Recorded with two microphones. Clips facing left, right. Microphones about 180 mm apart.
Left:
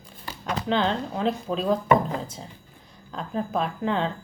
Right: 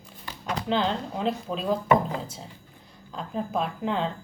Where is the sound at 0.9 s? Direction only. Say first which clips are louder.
Left 2 dB; 5° right (ahead or behind).